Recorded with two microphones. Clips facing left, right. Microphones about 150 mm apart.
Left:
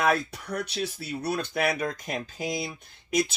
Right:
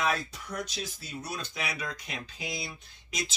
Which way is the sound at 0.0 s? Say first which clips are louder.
Left 5 dB; 60° left (ahead or behind).